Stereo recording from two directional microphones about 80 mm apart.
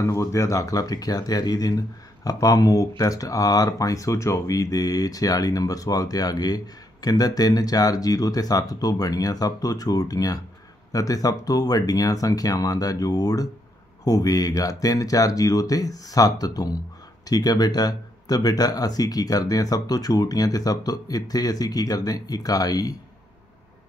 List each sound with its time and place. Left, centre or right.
0.0 s speech: left